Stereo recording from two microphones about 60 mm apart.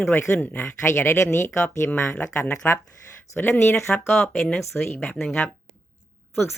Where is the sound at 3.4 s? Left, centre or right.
Left.